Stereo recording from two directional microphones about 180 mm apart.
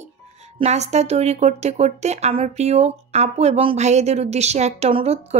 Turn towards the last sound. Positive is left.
turn(degrees=-35)  # may be behind; listen again after turning